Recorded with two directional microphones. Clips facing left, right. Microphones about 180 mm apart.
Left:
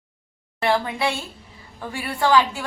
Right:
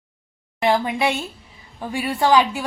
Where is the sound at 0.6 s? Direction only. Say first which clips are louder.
Right 2 dB; 15° right (ahead or behind).